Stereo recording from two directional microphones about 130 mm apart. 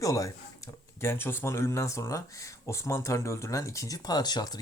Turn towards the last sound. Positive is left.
turn(degrees=30)  # may be behind; listen again after turning